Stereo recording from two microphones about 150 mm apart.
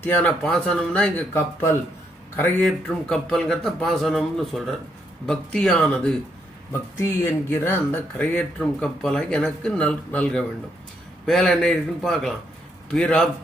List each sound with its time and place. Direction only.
0.0 s speech: 5° left (ahead or behind)
7.0 s speech: 15° left (ahead or behind)
8.4 s speech: 5° left (ahead or behind)